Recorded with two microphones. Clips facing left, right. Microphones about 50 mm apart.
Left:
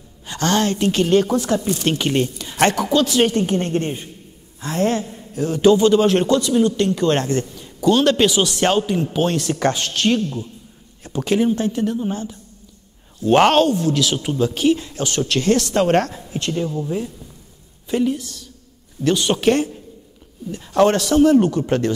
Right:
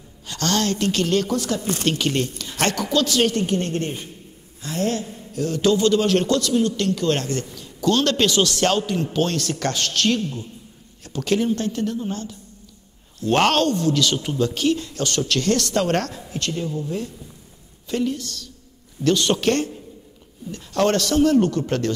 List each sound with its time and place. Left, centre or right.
0.3 s a man's voice: left
5.3 s a man's voice: left